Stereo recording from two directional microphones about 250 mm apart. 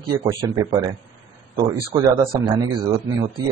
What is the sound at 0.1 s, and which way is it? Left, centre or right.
Speech, centre.